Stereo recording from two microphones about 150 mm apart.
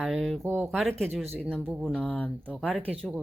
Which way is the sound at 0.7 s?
Centre (ahead or behind).